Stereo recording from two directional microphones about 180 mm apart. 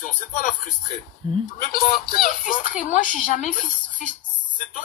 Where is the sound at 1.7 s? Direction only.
50° left (ahead or behind).